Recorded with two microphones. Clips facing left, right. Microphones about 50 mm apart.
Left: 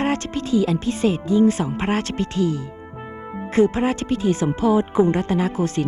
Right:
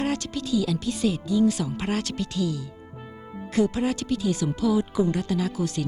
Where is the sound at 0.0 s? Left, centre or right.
Left.